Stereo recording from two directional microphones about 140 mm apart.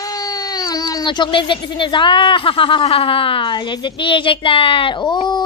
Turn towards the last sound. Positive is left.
turn(degrees=30)  # may be behind; listen again after turning